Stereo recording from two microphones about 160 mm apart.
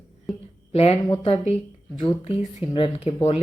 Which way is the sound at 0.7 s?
40° left (ahead or behind).